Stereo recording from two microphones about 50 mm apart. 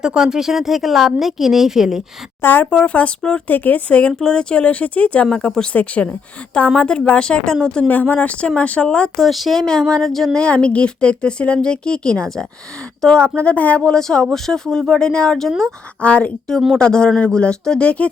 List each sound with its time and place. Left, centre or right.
0.0 s speech: centre
2.4 s speech: left
2.6 s speech: left
3.4 s speech: left
4.2 s speech: centre
5.7 s speech: left
7.9 s speech: left
9.1 s speech: centre
10.3 s speech: left
14.3 s speech: centre
16.0 s speech: left